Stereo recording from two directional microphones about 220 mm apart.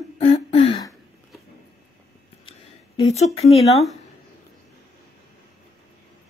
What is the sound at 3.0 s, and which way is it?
Speech, 30° left (ahead or behind).